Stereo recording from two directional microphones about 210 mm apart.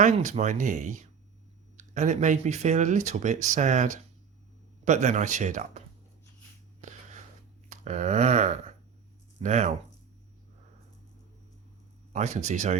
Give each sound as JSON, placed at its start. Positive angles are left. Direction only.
{"t": 0.0, "sound": "speech", "side_deg": -35}
{"t": 7.7, "sound": "a sound", "side_deg": -35}
{"t": 9.4, "sound": "speech", "side_deg": -35}
{"t": 12.1, "sound": "speech", "side_deg": -35}